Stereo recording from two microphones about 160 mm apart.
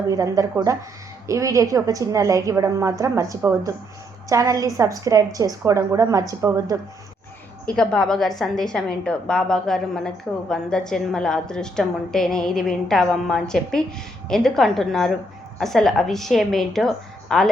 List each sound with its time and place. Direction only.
0.1 s a woman's voice: 20° right (ahead or behind)
7.6 s a woman's voice: 5° left (ahead or behind)